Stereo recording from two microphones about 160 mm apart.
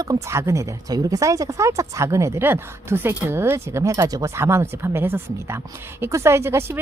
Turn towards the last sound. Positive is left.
turn(degrees=-15)  # may be behind; listen again after turning